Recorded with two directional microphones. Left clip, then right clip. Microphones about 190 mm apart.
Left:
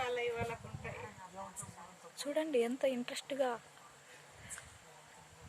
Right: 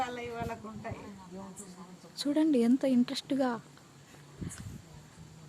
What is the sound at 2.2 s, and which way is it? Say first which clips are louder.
Speech: right 6 dB; 10° right (ahead or behind).